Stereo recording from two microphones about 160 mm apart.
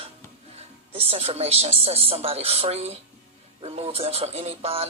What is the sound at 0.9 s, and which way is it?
Speech, 35° right (ahead or behind).